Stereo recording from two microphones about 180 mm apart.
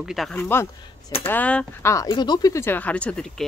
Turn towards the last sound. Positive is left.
turn(degrees=5)  # may be behind; listen again after turning